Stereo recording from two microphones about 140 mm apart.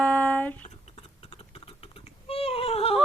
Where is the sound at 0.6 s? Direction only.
50° left (ahead or behind).